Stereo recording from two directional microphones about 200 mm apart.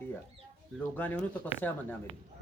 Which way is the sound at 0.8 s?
5° left (ahead or behind).